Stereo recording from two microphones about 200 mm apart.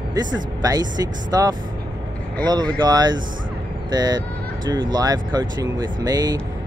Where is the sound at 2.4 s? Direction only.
20° right (ahead or behind).